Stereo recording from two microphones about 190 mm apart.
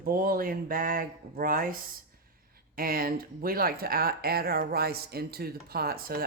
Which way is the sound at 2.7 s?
50° right (ahead or behind).